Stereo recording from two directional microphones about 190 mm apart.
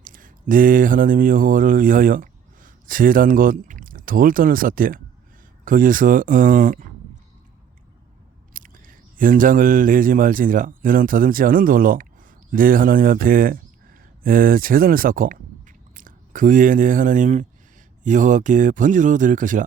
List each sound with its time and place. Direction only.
0.0 s speech: 45° right (ahead or behind)
8.5 s speech: 45° right (ahead or behind)